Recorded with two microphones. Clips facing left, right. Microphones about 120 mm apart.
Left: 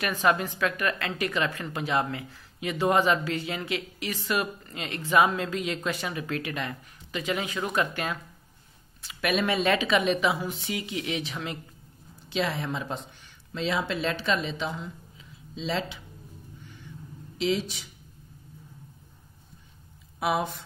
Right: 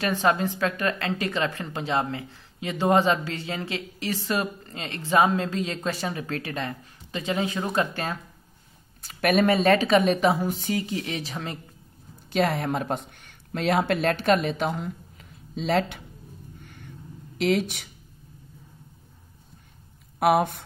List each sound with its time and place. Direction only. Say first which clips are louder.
0.0 s a woman's voice: right 2 dB; 30° right (ahead or behind)
9.0 s a woman's voice: right 6 dB; 45° right (ahead or behind)
12.3 s speech: right 5 dB; 50° right (ahead or behind)
16.6 s a sound: right 1 dB; 55° right (ahead or behind)
17.4 s speech: right 4 dB; 60° right (ahead or behind)
20.2 s speech: right 7 dB; 55° right (ahead or behind)